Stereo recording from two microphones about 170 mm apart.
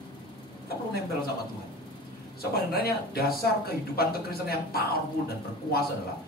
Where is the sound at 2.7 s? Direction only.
65° left (ahead or behind).